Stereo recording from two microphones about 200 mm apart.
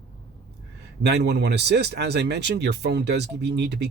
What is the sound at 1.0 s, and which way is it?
Speech, 55° right (ahead or behind).